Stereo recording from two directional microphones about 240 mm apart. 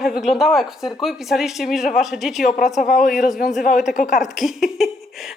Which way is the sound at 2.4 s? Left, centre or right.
Left.